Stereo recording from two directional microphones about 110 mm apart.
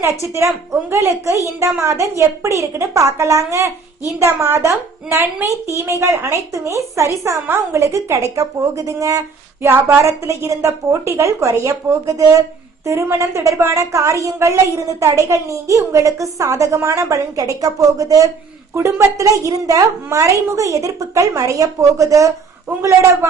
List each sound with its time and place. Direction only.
0.0 s a woman's voice: 25° right (ahead or behind)